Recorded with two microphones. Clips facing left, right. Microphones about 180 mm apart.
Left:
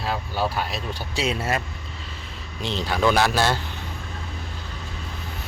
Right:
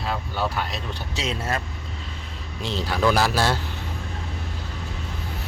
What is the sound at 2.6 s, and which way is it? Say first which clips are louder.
Speech: left 1 dB; centre (ahead or behind).